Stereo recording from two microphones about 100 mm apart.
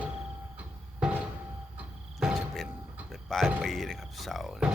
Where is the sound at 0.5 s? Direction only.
10° right (ahead or behind).